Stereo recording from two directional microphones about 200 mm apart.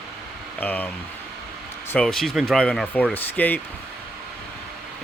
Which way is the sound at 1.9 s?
5° left (ahead or behind).